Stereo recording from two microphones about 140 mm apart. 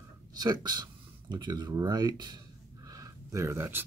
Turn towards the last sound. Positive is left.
turn(degrees=-15)  # may be behind; listen again after turning